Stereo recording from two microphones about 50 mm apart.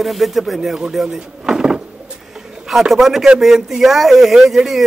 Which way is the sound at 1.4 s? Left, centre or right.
Centre.